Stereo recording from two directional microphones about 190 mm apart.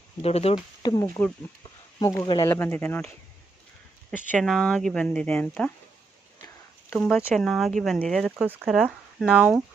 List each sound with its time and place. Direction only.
0.2 s speech: 30° left (ahead or behind); by 3.1 s 10° left (ahead or behind)
4.1 s speech: 5° right (ahead or behind)
6.9 s speech: centre (ahead or behind)